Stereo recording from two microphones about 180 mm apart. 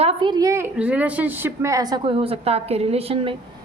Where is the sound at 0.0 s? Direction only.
30° right (ahead or behind).